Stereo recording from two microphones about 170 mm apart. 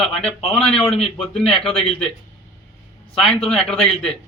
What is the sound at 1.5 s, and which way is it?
Speech, 35° left (ahead or behind).